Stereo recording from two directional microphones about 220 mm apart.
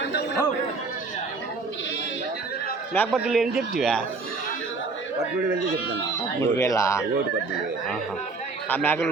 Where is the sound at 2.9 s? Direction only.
10° left (ahead or behind).